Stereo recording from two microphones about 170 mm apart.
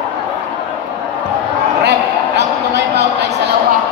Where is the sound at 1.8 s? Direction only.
80° right.